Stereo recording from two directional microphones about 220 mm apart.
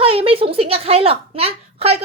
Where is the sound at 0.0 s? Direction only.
25° right (ahead or behind).